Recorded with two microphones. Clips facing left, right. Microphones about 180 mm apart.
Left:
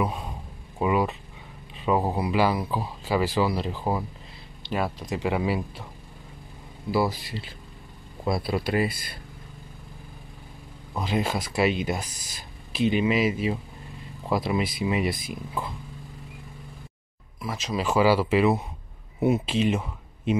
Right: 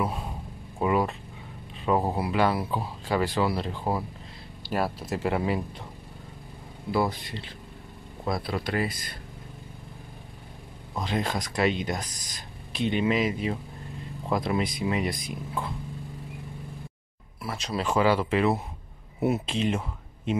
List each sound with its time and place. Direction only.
0.7 s speech: 5° left (ahead or behind)
6.9 s speech: 5° left (ahead or behind)
11.0 s speech: 5° left (ahead or behind)
17.4 s speech: centre (ahead or behind)